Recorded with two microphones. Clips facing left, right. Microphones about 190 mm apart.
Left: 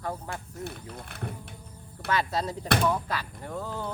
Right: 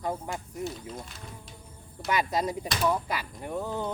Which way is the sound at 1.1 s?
60° left (ahead or behind).